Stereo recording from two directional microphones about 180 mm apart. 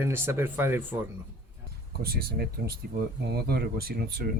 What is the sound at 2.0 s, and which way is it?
Speech, 55° right (ahead or behind).